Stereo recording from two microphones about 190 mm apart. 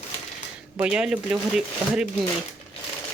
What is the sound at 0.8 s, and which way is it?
Speech, 5° right (ahead or behind).